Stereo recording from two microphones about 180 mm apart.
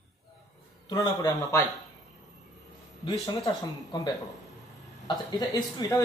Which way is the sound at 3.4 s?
20° left (ahead or behind).